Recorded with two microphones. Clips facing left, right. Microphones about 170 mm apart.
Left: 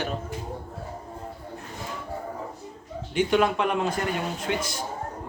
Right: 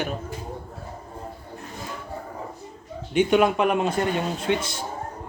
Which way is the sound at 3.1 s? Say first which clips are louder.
Right 3 dB; 20° right (ahead or behind).